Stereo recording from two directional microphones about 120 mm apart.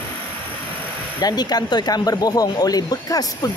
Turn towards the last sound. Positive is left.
turn(degrees=30)  # may be behind; listen again after turning